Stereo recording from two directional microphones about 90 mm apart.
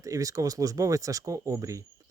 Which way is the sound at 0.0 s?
40° right (ahead or behind).